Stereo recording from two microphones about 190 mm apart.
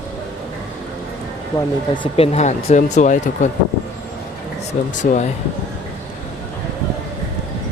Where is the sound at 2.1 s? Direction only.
30° left (ahead or behind).